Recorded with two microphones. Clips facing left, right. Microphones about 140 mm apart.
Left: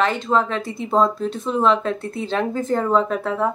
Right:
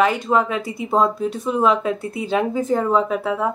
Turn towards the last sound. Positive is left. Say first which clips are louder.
# even
turn(degrees=-5)  # may be behind; listen again after turning